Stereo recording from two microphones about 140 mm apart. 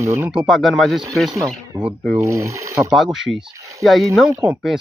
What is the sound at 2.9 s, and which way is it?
Speech, centre (ahead or behind).